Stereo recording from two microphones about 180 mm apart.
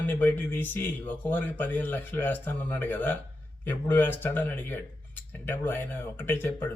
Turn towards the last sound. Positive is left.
turn(degrees=10)  # may be behind; listen again after turning